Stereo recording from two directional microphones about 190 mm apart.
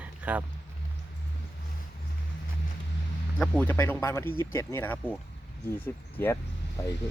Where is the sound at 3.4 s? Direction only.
10° left (ahead or behind).